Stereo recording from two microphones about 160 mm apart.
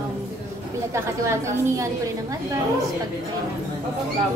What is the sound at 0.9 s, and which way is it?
Speech, 15° right (ahead or behind).